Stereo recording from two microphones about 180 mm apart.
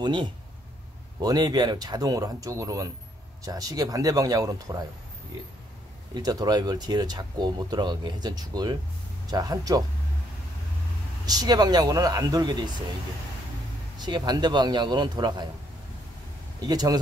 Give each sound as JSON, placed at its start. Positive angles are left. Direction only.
{"t": 0.0, "sound": "speech", "side_deg": -25}
{"t": 6.1, "sound": "speech", "side_deg": -20}
{"t": 11.2, "sound": "speech", "side_deg": -20}
{"t": 13.9, "sound": "speech", "side_deg": -25}
{"t": 16.6, "sound": "speech", "side_deg": -20}